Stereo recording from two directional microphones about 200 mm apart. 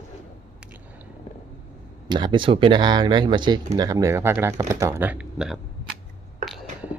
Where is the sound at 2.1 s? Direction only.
20° right (ahead or behind); by 5.6 s 5° right (ahead or behind).